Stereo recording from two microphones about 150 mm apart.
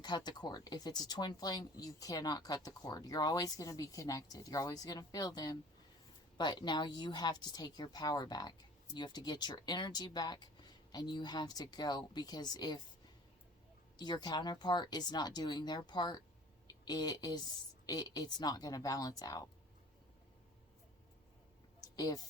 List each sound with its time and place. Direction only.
0.3 s speech: 30° left (ahead or behind)
14.0 s speech: 30° left (ahead or behind)
21.8 s a sound: 25° left (ahead or behind)